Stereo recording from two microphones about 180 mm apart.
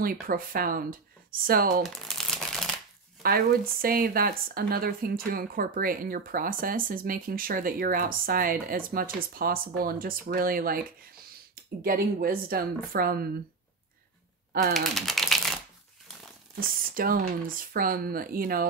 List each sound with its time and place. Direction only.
0.0 s speech: 55° right (ahead or behind)
1.8 s shuffling cards: centre (ahead or behind)
3.2 s speech: 55° right (ahead or behind)
14.7 s typing: centre (ahead or behind)
16.5 s speech: 50° right (ahead or behind)